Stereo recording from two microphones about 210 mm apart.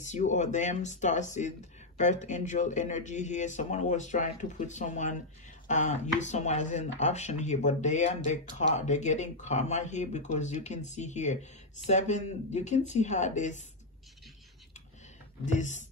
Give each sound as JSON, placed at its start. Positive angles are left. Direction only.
{"t": 0.0, "sound": "speech", "side_deg": 35}
{"t": 15.4, "sound": "speech", "side_deg": 35}